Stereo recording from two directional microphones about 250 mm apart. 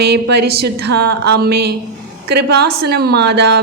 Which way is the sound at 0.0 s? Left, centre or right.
Right.